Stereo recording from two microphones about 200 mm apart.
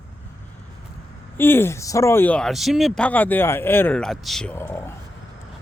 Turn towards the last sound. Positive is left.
turn(degrees=10)  # may be behind; listen again after turning